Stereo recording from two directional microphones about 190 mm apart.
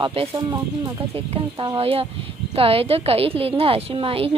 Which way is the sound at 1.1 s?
30° right (ahead or behind).